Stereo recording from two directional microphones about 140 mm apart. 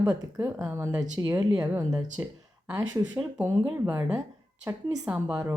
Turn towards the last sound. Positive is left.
turn(degrees=-10)  # may be behind; listen again after turning